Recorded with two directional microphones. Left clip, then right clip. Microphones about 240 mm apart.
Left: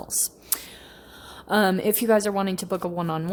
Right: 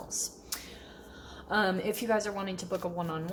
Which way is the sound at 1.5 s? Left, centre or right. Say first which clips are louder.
Left 7 dB; left.